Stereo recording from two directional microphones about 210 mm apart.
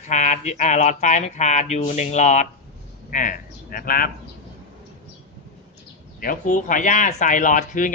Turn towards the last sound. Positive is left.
turn(degrees=40)  # may be behind; listen again after turning